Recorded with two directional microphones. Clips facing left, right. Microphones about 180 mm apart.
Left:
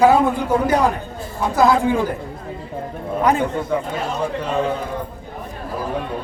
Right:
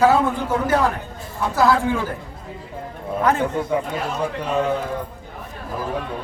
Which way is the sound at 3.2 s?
15° left (ahead or behind).